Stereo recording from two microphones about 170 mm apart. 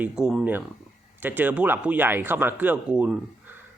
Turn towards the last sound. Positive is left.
turn(degrees=-5)  # may be behind; listen again after turning